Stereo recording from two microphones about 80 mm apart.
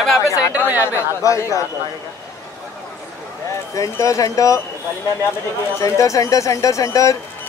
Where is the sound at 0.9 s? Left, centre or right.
Left.